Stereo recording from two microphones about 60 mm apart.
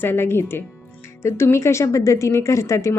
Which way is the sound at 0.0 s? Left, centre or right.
Left.